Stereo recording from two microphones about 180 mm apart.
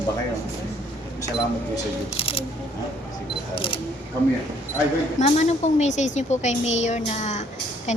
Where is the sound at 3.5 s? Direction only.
30° left (ahead or behind).